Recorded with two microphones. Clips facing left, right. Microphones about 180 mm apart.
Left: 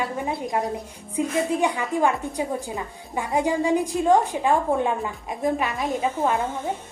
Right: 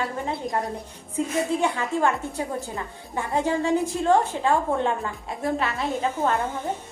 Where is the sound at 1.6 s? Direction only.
15° left (ahead or behind).